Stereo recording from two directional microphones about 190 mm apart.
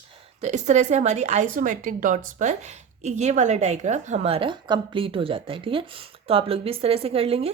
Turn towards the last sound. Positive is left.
turn(degrees=-30)  # may be behind; listen again after turning